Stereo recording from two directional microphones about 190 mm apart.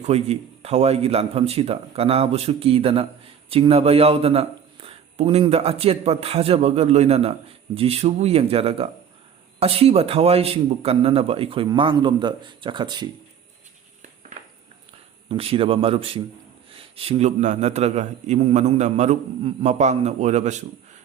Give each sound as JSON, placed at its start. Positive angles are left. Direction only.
{"t": 0.0, "sound": "a man's voice", "side_deg": -35}
{"t": 15.3, "sound": "a man's voice", "side_deg": -30}